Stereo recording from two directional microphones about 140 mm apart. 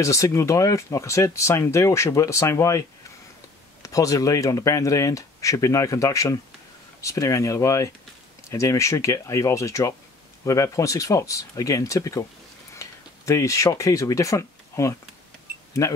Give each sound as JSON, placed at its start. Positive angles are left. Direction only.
{"t": 0.0, "sound": "speech", "side_deg": 20}
{"t": 3.8, "sound": "speech", "side_deg": 25}